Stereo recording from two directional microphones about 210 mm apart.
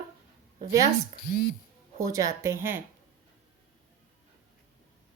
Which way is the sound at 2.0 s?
15° right (ahead or behind).